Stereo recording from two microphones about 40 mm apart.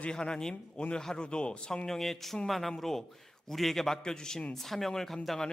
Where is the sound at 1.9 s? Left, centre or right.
Centre.